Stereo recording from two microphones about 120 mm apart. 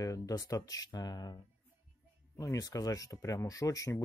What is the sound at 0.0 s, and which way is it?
Speech, 30° left (ahead or behind).